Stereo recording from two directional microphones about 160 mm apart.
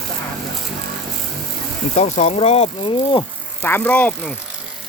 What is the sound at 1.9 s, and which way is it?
Speech, 45° left (ahead or behind).